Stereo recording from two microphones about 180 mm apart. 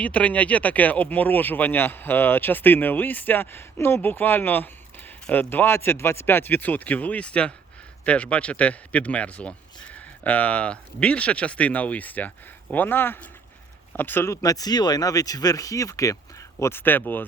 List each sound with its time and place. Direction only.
0.0 s speech: 5° left (ahead or behind)